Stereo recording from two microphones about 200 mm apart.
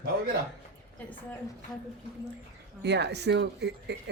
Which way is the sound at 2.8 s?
60° right (ahead or behind).